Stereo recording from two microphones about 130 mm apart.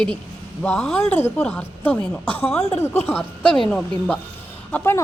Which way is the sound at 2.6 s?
55° left (ahead or behind).